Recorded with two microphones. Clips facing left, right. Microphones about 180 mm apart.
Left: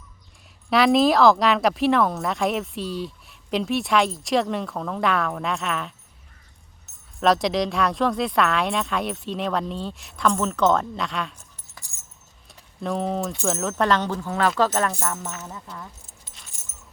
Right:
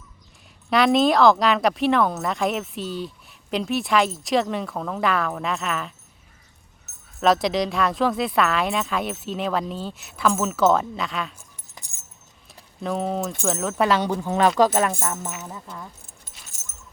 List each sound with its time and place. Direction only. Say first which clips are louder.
0.7 s speech: even; centre (ahead or behind)
7.2 s speech: even; centre (ahead or behind)
11.8 s a sound: right 2 dB; 20° right (ahead or behind)
12.8 s speech: even; centre (ahead or behind)